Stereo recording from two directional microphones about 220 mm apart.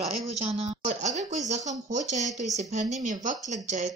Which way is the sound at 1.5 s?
30° right (ahead or behind).